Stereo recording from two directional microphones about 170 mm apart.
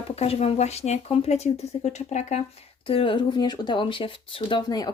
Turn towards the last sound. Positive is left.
turn(degrees=25)  # may be behind; listen again after turning